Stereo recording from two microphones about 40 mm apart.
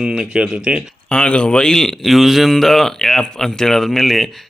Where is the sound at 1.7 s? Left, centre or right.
Centre.